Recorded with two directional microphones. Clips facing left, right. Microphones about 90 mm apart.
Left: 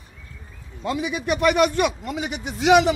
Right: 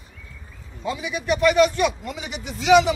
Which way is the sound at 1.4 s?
50° left (ahead or behind).